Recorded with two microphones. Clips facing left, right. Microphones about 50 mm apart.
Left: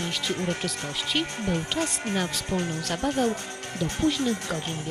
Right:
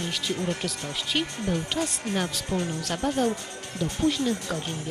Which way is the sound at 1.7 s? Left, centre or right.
Centre.